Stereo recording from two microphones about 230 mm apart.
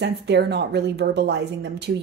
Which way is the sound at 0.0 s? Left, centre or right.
Right.